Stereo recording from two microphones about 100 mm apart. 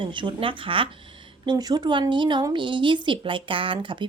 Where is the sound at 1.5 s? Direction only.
45° right (ahead or behind).